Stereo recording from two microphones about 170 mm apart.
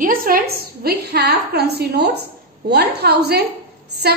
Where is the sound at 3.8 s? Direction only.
75° right (ahead or behind).